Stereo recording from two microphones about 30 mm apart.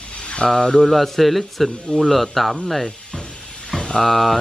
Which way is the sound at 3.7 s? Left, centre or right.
Left.